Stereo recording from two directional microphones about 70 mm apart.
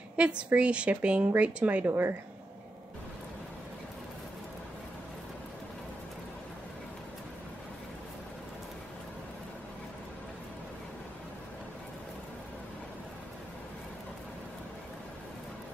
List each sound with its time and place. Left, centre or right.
0.2 s speech: centre
1.9 s speech: right